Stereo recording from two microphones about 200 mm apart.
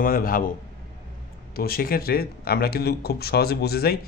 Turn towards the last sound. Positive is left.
turn(degrees=50)  # may be behind; listen again after turning